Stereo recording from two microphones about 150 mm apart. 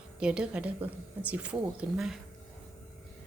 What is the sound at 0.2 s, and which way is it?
A woman's voice, 5° right (ahead or behind).